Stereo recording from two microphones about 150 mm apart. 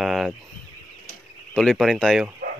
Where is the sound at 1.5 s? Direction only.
5° left (ahead or behind).